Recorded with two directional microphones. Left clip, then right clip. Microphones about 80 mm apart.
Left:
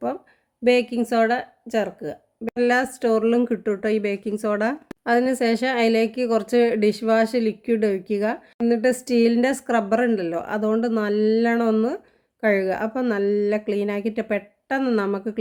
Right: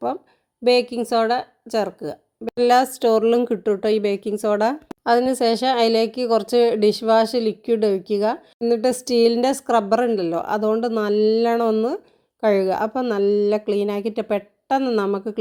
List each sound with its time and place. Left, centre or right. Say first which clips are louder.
0.6 s speech: right 2 dB; right
2.6 s speech: right 4 dB; right
14.8 s a woman's voice: even; right